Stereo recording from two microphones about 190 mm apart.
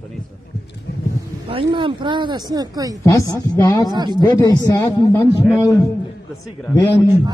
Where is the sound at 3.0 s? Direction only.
15° left (ahead or behind).